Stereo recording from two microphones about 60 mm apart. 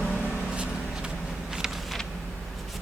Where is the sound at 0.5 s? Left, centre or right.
Centre.